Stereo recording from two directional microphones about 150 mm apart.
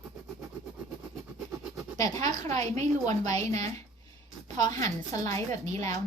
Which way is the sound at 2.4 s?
45° right (ahead or behind).